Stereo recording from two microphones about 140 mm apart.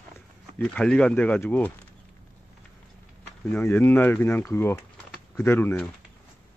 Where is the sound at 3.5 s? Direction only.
15° left (ahead or behind).